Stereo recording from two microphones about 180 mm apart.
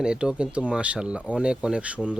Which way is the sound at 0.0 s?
5° right (ahead or behind).